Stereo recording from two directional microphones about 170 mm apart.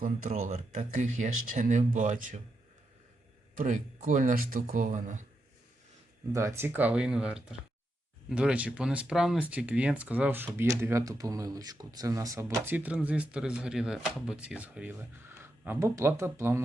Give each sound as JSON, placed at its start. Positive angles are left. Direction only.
{"t": 0.0, "sound": "speech", "side_deg": -50}
{"t": 3.5, "sound": "speech", "side_deg": -50}
{"t": 6.3, "sound": "speech", "side_deg": -15}